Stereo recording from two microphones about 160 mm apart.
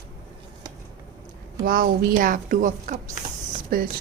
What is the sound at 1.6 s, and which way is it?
A woman's voice, 65° right (ahead or behind).